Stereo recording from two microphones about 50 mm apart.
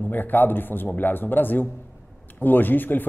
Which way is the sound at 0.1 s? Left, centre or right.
Left.